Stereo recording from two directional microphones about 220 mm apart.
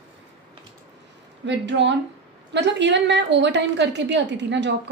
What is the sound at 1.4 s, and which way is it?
A woman's voice, 55° right (ahead or behind).